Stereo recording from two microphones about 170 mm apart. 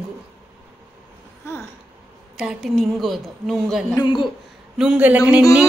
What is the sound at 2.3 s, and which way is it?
A woman's voice, 5° right (ahead or behind).